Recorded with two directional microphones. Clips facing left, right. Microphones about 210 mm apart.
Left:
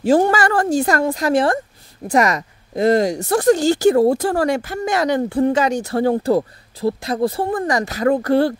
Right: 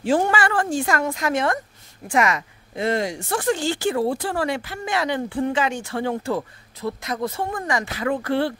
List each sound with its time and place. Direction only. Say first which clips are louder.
0.0 s speech: left 5 dB; 40° left (ahead or behind)